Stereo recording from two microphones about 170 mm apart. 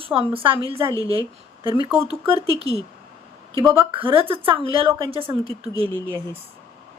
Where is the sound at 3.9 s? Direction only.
30° right (ahead or behind).